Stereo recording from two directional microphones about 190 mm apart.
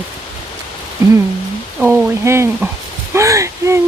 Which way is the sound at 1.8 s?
15° right (ahead or behind).